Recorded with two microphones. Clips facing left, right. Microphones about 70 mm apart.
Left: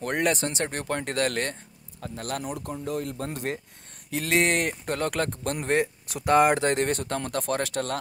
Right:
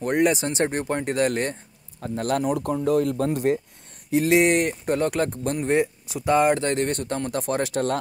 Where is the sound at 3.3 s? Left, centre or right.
Centre.